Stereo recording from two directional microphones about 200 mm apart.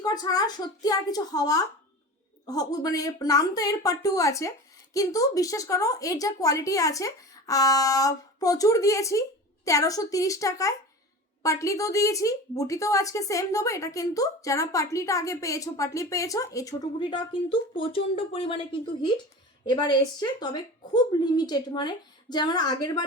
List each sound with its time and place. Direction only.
0.0 s a woman's voice: 20° left (ahead or behind)